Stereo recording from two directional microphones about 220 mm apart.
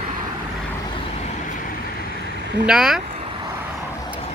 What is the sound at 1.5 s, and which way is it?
Vehicle, 35° left (ahead or behind).